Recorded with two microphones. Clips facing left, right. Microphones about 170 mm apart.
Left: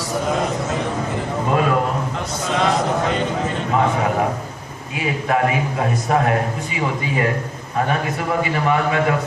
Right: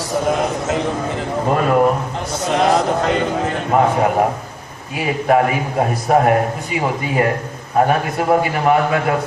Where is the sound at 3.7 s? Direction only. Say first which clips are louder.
Right 4 dB; 50° right (ahead or behind).